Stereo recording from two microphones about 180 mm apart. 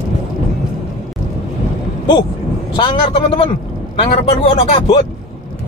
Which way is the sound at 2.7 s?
25° left (ahead or behind).